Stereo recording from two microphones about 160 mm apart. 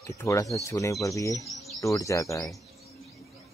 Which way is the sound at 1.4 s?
Centre (ahead or behind).